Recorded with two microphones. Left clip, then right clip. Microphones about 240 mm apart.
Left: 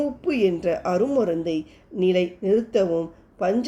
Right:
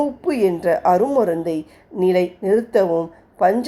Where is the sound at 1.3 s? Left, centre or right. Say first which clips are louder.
Right 3 dB; right.